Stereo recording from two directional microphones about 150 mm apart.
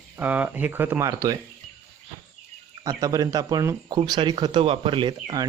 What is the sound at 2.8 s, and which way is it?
Speech, 25° right (ahead or behind).